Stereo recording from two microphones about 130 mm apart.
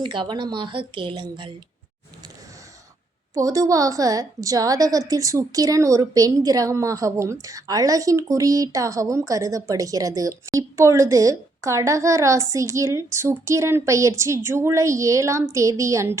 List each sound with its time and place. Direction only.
0.0 s a woman's voice: 40° right (ahead or behind)
3.3 s speech: 25° right (ahead or behind)